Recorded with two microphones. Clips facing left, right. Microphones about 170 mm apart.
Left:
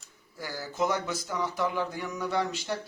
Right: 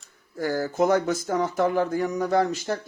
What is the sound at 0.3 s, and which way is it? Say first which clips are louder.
Speech: right 8 dB; 50° right (ahead or behind).